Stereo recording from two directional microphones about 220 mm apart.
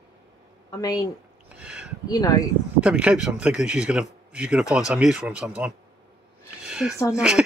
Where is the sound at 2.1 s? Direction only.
15° left (ahead or behind).